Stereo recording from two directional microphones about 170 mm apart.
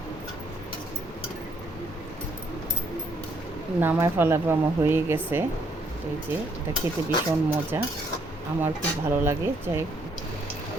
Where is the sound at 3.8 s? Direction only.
10° right (ahead or behind).